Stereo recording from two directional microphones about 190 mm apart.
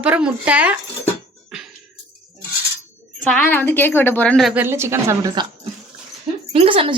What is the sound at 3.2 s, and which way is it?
A woman's voice, 10° left (ahead or behind).